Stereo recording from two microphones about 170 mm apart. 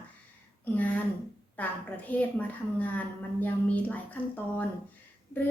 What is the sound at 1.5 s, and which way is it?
A woman's voice, 10° left (ahead or behind).